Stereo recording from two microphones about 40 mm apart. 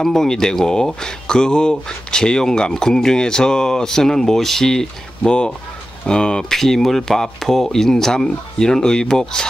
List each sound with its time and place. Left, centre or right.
0.0 s speech: centre